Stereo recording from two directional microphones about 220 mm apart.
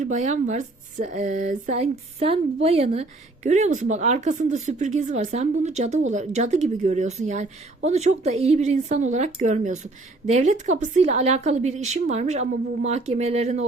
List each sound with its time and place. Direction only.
0.0 s speech: 35° right (ahead or behind)